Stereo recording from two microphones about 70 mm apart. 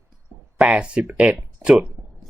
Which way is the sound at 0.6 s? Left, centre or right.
Centre.